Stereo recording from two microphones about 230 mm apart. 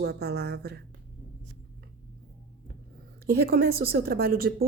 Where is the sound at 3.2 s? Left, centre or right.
Right.